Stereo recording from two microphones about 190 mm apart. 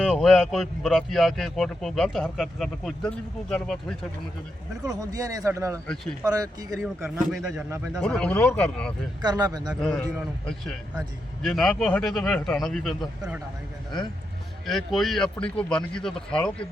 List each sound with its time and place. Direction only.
0.0 s speech: centre (ahead or behind)
4.9 s a man's voice: 20° right (ahead or behind)
6.7 s speech: centre (ahead or behind)
9.2 s speech: 20° right (ahead or behind)
9.8 s speech: 5° left (ahead or behind)
11.4 s speech: centre (ahead or behind)
14.7 s speech: centre (ahead or behind)